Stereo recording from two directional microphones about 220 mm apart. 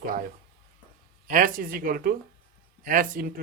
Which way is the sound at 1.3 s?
40° right (ahead or behind).